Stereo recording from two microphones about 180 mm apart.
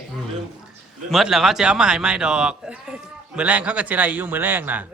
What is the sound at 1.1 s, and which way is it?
A man's voice, centre (ahead or behind).